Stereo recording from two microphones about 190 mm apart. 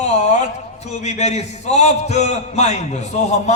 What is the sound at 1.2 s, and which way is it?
A man's voice, 35° left (ahead or behind).